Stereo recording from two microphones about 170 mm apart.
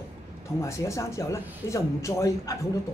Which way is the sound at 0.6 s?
15° left (ahead or behind).